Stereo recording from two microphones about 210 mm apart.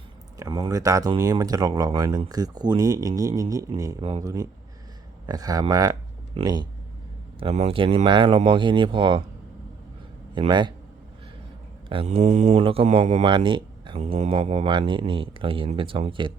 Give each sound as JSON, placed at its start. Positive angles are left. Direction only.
{"t": 0.3, "sound": "speech", "side_deg": -20}
{"t": 10.3, "sound": "speech", "side_deg": -20}
{"t": 11.9, "sound": "speech", "side_deg": -25}